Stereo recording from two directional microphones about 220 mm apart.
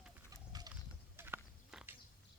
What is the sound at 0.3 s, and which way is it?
Horse, 15° right (ahead or behind).